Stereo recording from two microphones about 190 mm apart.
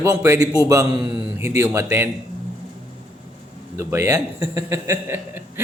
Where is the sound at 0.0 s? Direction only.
15° right (ahead or behind).